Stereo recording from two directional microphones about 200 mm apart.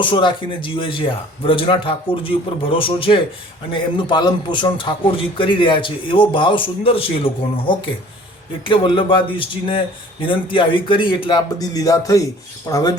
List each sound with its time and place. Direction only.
0.0 s a man's voice: 25° left (ahead or behind)
8.6 s a man's voice: 25° left (ahead or behind)
12.6 s filing: 15° left (ahead or behind)